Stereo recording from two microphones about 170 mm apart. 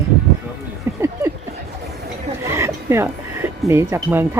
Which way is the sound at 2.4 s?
15° right (ahead or behind).